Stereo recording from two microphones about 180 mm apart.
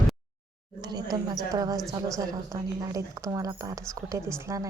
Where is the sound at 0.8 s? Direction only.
20° right (ahead or behind).